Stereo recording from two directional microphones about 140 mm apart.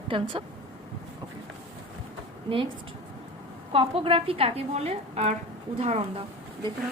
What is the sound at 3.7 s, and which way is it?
A woman's voice, 40° right (ahead or behind).